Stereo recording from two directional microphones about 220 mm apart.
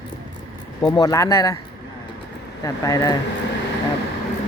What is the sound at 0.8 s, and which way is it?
Speech, 15° left (ahead or behind).